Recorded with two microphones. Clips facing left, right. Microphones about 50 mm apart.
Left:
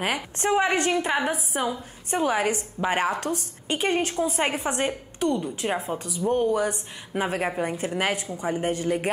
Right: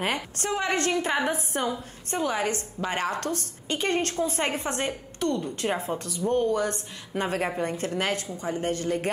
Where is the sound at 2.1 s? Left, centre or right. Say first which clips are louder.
Left 3 dB; centre.